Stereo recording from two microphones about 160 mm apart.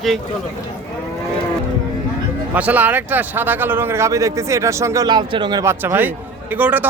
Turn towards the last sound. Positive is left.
turn(degrees=-10)  # may be behind; listen again after turning